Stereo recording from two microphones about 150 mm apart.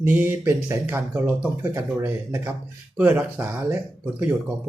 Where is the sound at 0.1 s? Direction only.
10° right (ahead or behind).